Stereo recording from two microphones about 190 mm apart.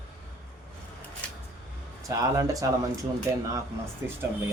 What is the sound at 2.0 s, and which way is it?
A man's voice, 15° right (ahead or behind).